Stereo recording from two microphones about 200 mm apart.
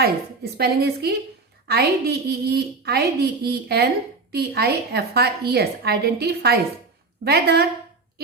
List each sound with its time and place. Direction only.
0.0 s a woman's voice: 55° right (ahead or behind)